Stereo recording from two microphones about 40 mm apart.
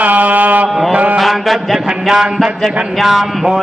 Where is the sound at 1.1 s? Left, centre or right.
Centre.